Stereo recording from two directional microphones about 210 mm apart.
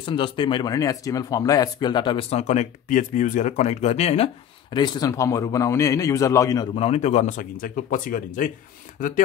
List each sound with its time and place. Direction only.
0.0 s speech: 25° left (ahead or behind)
6.7 s speech: 30° left (ahead or behind)